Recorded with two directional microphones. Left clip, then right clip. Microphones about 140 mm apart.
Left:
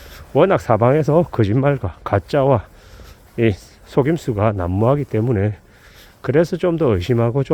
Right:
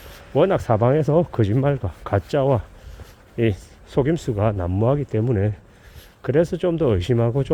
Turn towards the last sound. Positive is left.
turn(degrees=25)  # may be behind; listen again after turning